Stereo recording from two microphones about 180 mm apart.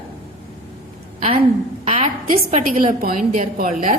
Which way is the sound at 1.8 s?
40° right (ahead or behind).